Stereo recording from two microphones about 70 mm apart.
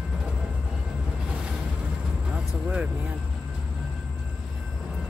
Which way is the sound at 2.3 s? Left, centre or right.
Centre.